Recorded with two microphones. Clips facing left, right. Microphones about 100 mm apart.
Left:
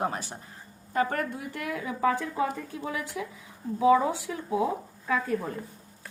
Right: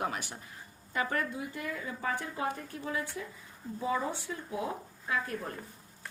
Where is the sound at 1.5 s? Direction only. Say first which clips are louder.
Left 5 dB; 75° left (ahead or behind); by 4.4 s 90° left.